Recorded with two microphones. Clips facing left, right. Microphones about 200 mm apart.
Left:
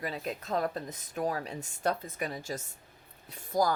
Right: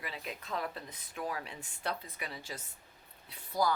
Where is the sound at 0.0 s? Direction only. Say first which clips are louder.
Left 7 dB; 40° left (ahead or behind).